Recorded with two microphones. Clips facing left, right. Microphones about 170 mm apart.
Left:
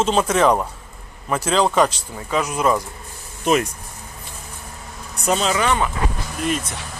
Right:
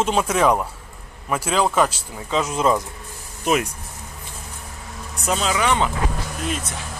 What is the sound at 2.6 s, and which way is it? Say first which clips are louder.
Speech: even; 25° right (ahead or behind).